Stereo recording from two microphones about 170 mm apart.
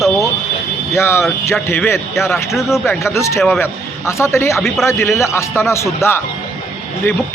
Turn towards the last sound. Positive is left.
turn(degrees=15)  # may be behind; listen again after turning